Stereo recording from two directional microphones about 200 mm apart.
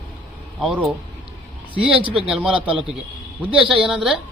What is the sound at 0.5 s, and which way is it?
Speech, centre (ahead or behind).